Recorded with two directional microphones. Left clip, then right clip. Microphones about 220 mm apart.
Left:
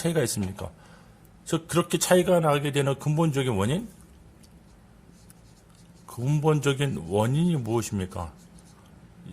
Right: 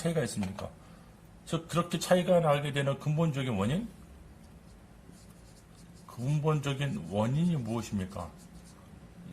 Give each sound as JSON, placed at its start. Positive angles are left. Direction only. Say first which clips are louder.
{"t": 0.0, "sound": "a man's voice", "louder": "left 6 dB", "side_deg": 45}
{"t": 1.5, "sound": "a man's voice", "louder": "left 7 dB", "side_deg": 50}
{"t": 6.2, "sound": "a man's voice", "louder": "left 8 dB", "side_deg": 50}